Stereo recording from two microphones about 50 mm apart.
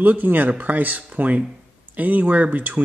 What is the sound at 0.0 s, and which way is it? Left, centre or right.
Speech, right.